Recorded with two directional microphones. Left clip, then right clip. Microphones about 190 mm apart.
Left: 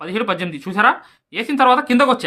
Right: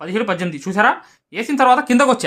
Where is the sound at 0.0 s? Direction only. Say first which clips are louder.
Right 1 dB; 30° right (ahead or behind).